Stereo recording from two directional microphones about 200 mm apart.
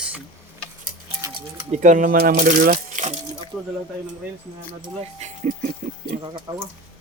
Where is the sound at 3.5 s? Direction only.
5° right (ahead or behind).